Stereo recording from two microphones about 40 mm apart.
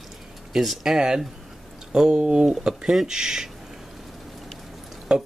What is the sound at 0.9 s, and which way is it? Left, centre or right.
Speech, centre.